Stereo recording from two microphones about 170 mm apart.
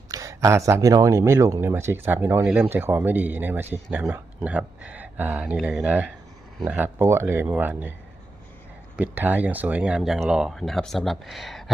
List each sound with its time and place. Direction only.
0.1 s speech: 20° right (ahead or behind)
9.0 s speech: 10° right (ahead or behind)